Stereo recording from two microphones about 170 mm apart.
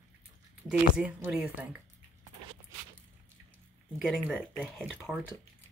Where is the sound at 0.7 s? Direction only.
5° right (ahead or behind).